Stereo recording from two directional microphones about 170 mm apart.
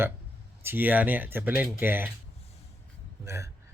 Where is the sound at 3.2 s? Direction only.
15° right (ahead or behind).